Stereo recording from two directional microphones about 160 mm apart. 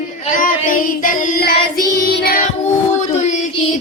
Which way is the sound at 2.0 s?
70° left (ahead or behind).